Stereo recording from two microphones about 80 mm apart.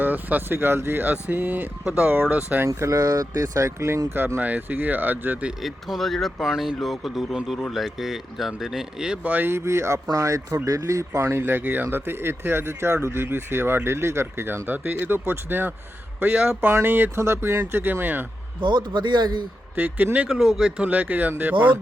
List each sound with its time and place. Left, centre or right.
0.0 s speech: right
2.6 s speech: right; by 5.5 s centre
5.6 s speech: centre
9.2 s speech: right
16.3 s speech: centre
16.6 s speech: right
18.6 s a man's voice: right
19.7 s speech: right
20.2 s speech: centre; by 21.5 s right